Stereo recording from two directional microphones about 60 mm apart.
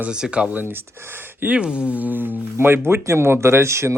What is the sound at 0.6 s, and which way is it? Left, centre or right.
Speech, right.